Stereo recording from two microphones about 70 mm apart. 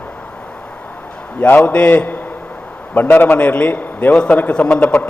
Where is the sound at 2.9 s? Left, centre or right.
Left.